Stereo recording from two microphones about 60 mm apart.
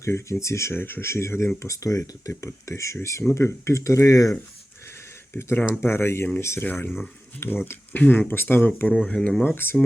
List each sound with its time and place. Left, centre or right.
0.0 s speech: left
0.7 s speech: left
1.1 s speech: left
1.6 s speech: left
5.3 s speech: left
7.6 s speech: left
9.1 s speech: centre
9.6 s speech: left